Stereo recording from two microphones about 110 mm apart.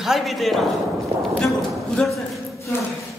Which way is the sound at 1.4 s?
Centre (ahead or behind).